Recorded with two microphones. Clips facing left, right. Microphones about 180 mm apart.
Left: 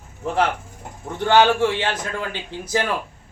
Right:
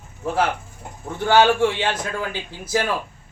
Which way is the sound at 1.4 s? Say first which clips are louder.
Right 1 dB; 15° right (ahead or behind).